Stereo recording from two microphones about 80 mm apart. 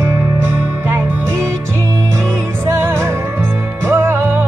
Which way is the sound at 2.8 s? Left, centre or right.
Right.